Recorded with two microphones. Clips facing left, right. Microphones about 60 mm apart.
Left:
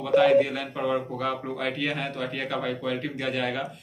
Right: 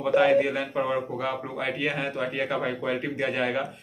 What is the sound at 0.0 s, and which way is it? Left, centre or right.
A man's voice, right.